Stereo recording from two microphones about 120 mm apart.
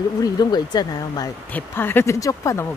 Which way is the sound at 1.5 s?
15° left (ahead or behind).